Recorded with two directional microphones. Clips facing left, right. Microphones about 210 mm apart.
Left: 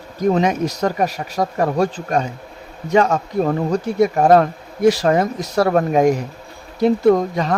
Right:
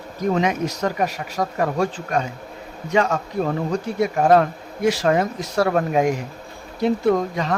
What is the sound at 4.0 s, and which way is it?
Speech, 40° left (ahead or behind).